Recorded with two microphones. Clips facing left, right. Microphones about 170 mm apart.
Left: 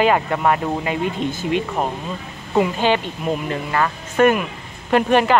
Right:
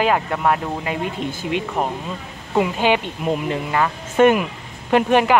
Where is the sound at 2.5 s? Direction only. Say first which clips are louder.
Even; 10° right (ahead or behind).